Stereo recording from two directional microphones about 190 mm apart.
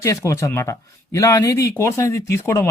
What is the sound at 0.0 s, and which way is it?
Speech, 15° left (ahead or behind).